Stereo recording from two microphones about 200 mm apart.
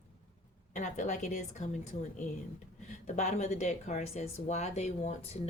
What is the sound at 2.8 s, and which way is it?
Speech, 35° left (ahead or behind).